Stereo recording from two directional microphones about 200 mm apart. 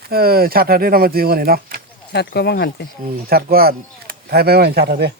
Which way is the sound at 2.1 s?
55° left (ahead or behind).